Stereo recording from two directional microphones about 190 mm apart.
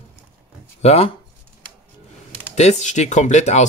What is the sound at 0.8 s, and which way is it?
Speech, 35° left (ahead or behind).